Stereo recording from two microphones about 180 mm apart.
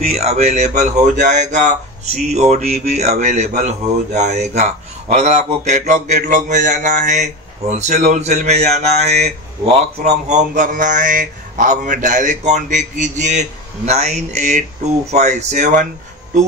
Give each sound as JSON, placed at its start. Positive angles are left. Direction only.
{"t": 0.0, "sound": "speech", "side_deg": -35}